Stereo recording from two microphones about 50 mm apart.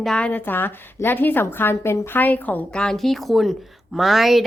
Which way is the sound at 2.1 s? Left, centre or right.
Left.